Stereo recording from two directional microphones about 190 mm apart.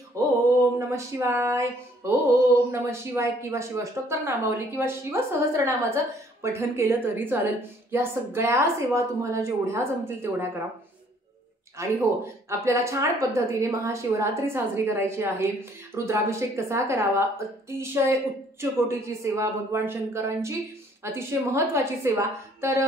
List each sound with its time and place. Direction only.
0.7 s a woman's voice: 15° right (ahead or behind)
11.8 s a woman's voice: 15° right (ahead or behind)